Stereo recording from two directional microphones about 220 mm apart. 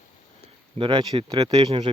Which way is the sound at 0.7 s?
25° right (ahead or behind).